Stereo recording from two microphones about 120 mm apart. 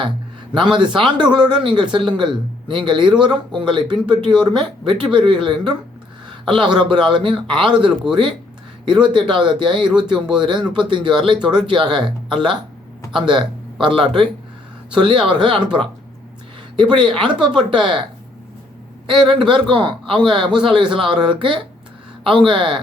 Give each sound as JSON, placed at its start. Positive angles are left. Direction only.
{"t": 0.5, "sound": "a man's voice", "side_deg": -40}
{"t": 19.0, "sound": "a man's voice", "side_deg": -40}